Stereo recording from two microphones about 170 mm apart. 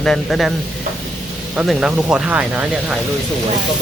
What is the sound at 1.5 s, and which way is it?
Speech, centre (ahead or behind).